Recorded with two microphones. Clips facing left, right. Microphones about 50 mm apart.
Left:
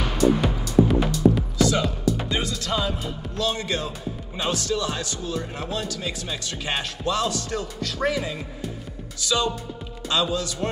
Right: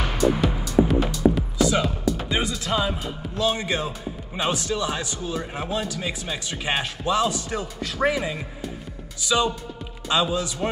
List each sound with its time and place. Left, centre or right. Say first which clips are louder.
0.0 s music: left 1 dB; centre
0.7 s music: left 1 dB; centre
1.6 s music: right 1 dB; centre
4.4 s a man's voice: right 1 dB; centre